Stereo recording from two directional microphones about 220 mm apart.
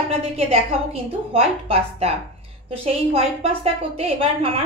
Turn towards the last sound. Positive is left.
turn(degrees=-25)  # may be behind; listen again after turning